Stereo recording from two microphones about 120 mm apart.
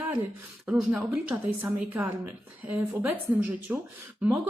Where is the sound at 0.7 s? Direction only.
5° right (ahead or behind).